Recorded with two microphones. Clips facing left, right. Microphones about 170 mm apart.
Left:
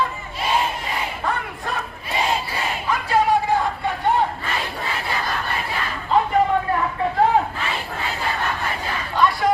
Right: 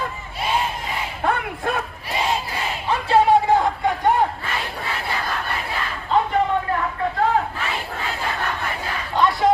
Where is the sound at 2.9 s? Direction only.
25° right (ahead or behind).